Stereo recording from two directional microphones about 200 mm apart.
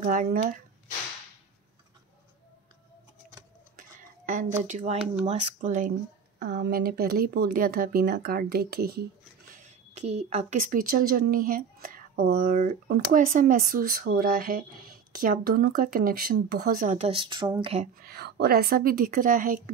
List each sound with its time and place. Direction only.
0.0 s speech: 40° right (ahead or behind)
4.3 s speech: 40° right (ahead or behind)
6.4 s speech: 55° right (ahead or behind)
9.5 s speech: 35° right (ahead or behind)
17.1 s a woman's voice: 25° right (ahead or behind)
18.0 s speech: 50° right (ahead or behind)